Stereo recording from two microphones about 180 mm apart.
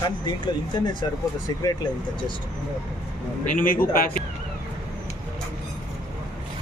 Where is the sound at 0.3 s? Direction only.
25° left (ahead or behind).